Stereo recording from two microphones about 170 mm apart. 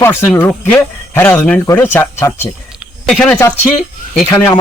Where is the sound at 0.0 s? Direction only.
10° left (ahead or behind).